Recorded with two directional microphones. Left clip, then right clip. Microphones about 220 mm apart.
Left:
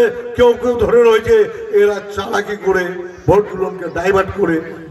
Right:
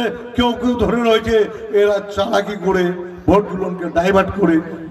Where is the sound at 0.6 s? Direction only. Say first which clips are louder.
Left 6 dB; 45° right (ahead or behind).